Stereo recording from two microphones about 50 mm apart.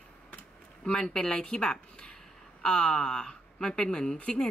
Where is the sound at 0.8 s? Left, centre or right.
Centre.